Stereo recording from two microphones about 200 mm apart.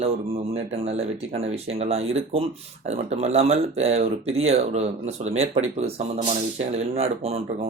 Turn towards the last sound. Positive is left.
turn(degrees=-30)  # may be behind; listen again after turning